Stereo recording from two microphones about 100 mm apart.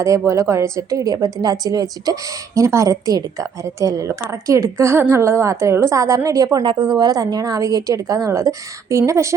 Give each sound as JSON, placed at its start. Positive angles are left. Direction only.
{"t": 0.0, "sound": "a woman's voice", "side_deg": -30}
{"t": 6.6, "sound": "a woman's voice", "side_deg": -50}